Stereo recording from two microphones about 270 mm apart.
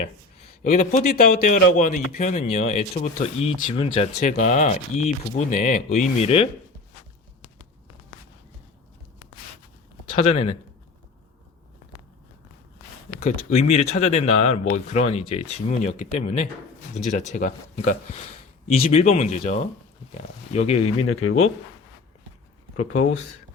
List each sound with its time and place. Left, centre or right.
0.7 s a man's voice: left
10.3 s speech: left
13.2 s speech: left
21.0 s speech: left
22.7 s speech: left